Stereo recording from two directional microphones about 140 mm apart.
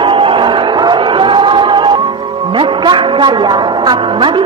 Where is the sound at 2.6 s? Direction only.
35° right (ahead or behind).